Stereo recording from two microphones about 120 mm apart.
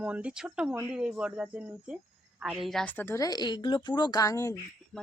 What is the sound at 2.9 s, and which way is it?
A woman's voice, 20° left (ahead or behind).